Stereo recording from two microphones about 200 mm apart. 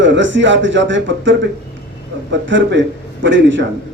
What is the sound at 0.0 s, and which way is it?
A man's voice, 65° right (ahead or behind).